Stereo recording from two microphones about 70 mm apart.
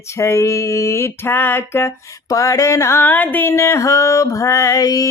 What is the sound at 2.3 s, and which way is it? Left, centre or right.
Female singing, left.